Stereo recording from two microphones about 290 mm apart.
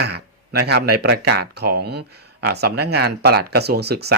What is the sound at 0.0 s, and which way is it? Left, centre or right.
Speech, right.